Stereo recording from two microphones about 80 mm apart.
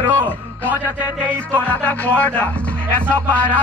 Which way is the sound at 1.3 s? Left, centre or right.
Centre.